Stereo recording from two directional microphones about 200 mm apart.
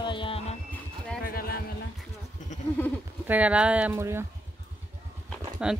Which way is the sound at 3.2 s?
5° right (ahead or behind).